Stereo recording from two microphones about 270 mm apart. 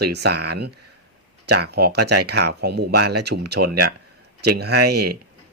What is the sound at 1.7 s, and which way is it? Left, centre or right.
Speech, right.